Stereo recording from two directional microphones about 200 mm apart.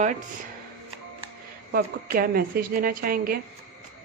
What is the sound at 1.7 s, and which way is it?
A woman's voice, 50° right (ahead or behind).